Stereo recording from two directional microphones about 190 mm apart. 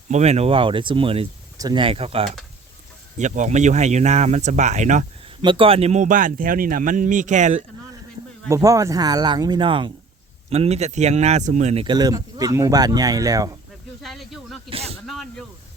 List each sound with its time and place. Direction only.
0.1 s speech: 35° right (ahead or behind)
5.4 s speech: 25° right (ahead or behind)
8.4 s speech: 15° right (ahead or behind)
14.0 s speech: centre (ahead or behind)
14.7 s speech: 30° right (ahead or behind)
15.0 s speech: centre (ahead or behind)